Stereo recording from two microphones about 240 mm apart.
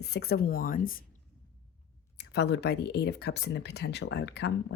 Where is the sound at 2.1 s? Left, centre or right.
Left.